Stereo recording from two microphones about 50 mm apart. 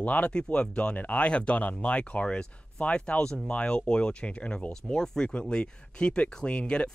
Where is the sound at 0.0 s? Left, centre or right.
Left.